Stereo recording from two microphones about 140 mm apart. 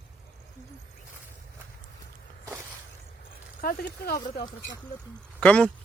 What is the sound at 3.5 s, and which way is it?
Speech, 80° left.